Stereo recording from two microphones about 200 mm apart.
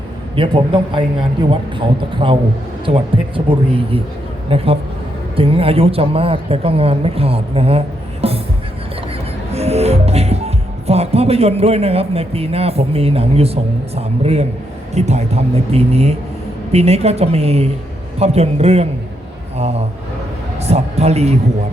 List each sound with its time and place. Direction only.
0.3 s speech: 25° right (ahead or behind)
2.2 s speech: 25° right (ahead or behind)
8.2 s a sound: 30° right (ahead or behind)
9.5 s speech: 30° right (ahead or behind)